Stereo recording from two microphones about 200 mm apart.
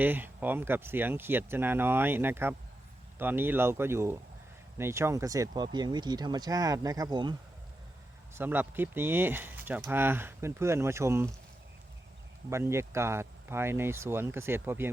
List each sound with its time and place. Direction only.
0.0 s speech: 10° right (ahead or behind)
8.4 s speech: 10° right (ahead or behind)
12.5 s speech: 15° right (ahead or behind)